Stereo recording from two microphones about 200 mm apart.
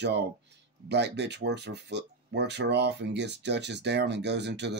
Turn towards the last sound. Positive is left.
turn(degrees=-60)  # may be behind; listen again after turning